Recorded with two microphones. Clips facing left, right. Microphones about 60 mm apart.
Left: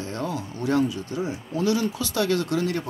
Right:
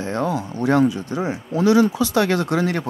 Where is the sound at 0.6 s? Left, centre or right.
Right.